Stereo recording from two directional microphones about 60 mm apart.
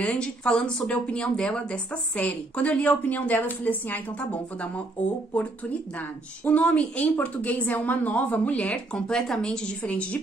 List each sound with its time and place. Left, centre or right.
0.0 s a woman's voice: centre